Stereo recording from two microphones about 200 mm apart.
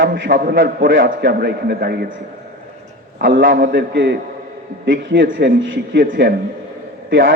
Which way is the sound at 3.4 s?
60° right (ahead or behind).